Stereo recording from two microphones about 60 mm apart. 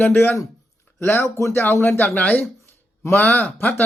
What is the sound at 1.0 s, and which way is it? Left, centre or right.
Speech, left.